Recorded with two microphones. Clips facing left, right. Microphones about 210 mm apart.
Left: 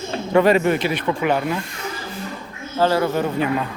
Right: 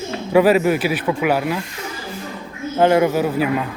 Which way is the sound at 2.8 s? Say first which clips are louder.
Right 4 dB; 20° right (ahead or behind).